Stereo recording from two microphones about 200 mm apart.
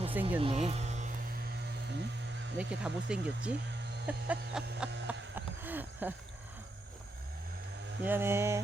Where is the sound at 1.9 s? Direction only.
60° right (ahead or behind).